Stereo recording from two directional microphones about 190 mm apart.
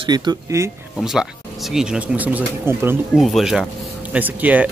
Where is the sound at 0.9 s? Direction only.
Centre (ahead or behind).